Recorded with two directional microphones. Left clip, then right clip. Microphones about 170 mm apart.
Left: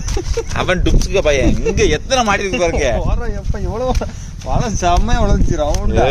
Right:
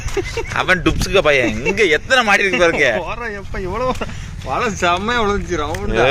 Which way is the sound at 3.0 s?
40° left (ahead or behind).